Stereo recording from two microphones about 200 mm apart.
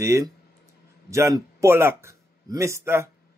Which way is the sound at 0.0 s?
15° right (ahead or behind).